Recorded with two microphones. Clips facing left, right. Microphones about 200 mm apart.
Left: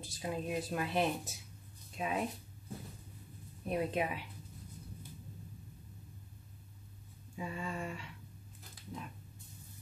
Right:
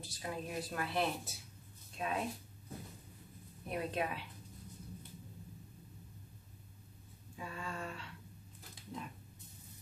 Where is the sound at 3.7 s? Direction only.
15° left (ahead or behind).